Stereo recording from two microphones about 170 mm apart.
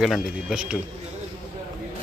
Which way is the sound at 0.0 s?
5° right (ahead or behind).